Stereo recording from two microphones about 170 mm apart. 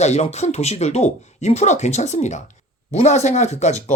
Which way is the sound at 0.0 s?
40° left (ahead or behind).